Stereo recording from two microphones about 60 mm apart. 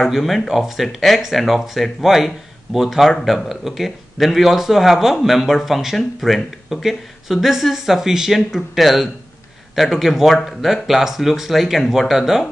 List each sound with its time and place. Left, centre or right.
0.0 s speech: centre